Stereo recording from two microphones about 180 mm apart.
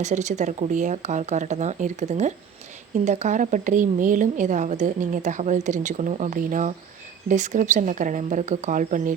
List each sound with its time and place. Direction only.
0.0 s a woman's voice: 40° right (ahead or behind)